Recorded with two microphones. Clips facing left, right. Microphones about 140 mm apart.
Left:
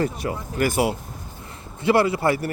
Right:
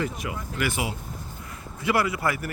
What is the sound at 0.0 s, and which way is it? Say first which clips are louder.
Speech: left 5 dB; 40° left (ahead or behind).